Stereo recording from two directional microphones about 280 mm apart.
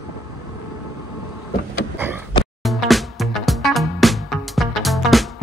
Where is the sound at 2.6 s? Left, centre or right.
Centre.